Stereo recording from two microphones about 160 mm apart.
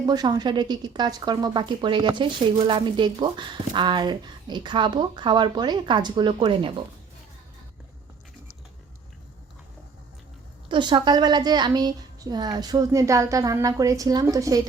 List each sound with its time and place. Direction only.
0.0 s a woman's voice: 25° right (ahead or behind)
10.7 s a woman's voice: 30° right (ahead or behind)